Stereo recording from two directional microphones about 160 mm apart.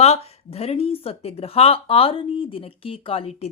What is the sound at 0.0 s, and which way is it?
Speech, 40° left (ahead or behind).